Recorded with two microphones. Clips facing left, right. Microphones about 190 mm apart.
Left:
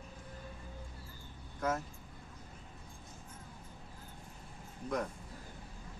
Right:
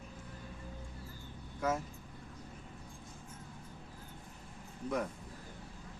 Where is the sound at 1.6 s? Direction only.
10° right (ahead or behind).